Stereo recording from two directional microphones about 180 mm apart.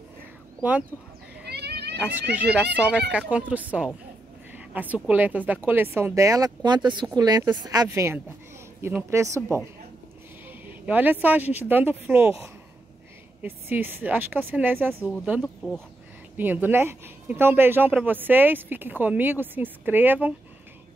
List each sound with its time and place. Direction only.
0.6 s speech: 10° right (ahead or behind)
1.4 s cat: 65° right (ahead or behind)
2.3 s speech: 10° right (ahead or behind)
10.6 s speech: 10° right (ahead or behind)
13.4 s speech: 10° right (ahead or behind)